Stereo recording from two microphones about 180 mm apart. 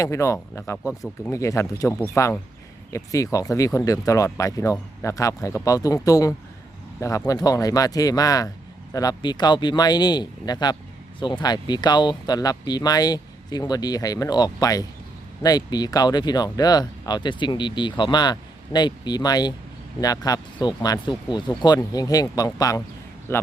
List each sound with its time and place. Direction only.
0.0 s speech: 15° left (ahead or behind)